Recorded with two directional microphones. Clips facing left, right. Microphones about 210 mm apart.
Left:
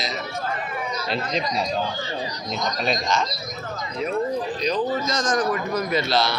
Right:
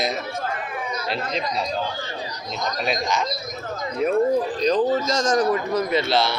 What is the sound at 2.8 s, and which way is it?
Speech, 10° right (ahead or behind).